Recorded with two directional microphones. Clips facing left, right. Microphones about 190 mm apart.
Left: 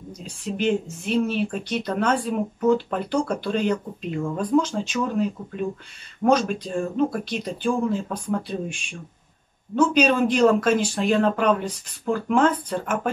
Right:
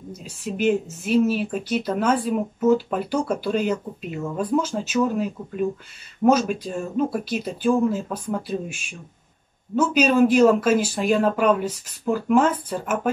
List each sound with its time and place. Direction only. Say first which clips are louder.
0.2 s speech: right 2 dB; 5° right (ahead or behind)